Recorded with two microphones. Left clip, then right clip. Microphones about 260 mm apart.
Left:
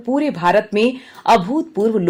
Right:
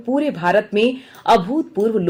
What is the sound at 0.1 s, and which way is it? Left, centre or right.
Speech, left.